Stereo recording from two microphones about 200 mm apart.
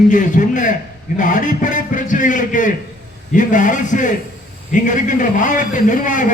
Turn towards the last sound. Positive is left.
turn(degrees=40)  # may be behind; listen again after turning